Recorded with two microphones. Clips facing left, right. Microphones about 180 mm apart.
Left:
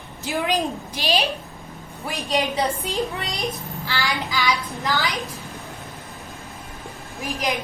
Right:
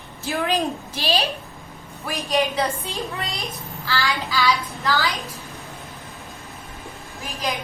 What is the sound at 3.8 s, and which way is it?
A woman's voice, 15° left (ahead or behind).